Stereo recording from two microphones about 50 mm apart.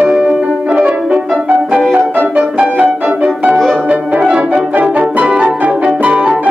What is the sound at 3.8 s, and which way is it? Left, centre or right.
French horn, right.